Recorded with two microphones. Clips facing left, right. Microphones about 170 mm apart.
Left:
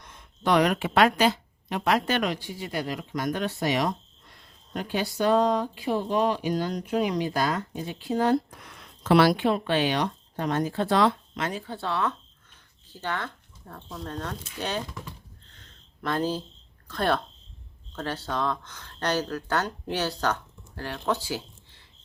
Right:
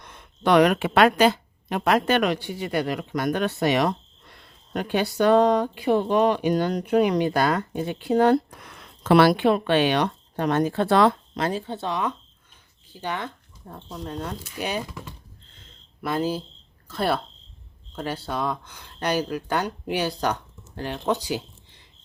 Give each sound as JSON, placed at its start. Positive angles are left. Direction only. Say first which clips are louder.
{"t": 0.0, "sound": "speech", "louder": "right 4 dB", "side_deg": -65}
{"t": 11.3, "sound": "speech", "louder": "right 5 dB", "side_deg": -30}
{"t": 16.0, "sound": "speech", "louder": "right 2 dB", "side_deg": -10}